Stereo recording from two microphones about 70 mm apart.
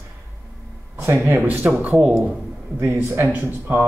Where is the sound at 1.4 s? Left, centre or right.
Right.